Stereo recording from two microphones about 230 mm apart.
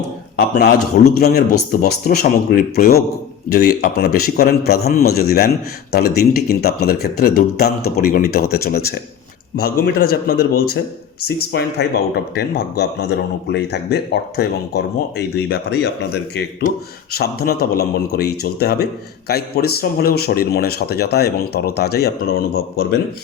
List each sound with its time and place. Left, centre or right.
0.3 s speech: left